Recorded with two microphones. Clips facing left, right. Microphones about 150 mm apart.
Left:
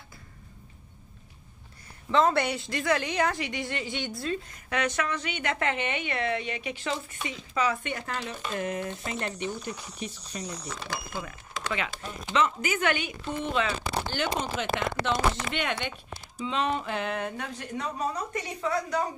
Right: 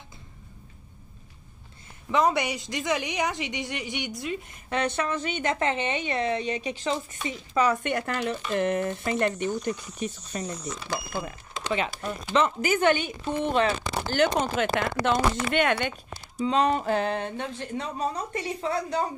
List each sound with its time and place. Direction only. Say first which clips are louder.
2.0 s a woman's voice: even; 15° right (ahead or behind)
4.6 s a woman's voice: right 2 dB; 30° right (ahead or behind)
7.5 s speech: right 4 dB; 45° right (ahead or behind)
7.9 s speech: right 6 dB; 60° right (ahead or behind)
9.9 s speech: right 5 dB; 50° right (ahead or behind)
11.2 s speech: right 4 dB; 25° right (ahead or behind); by 15.9 s 50° right (ahead or behind)
16.3 s speech: right 5 dB; 40° right (ahead or behind)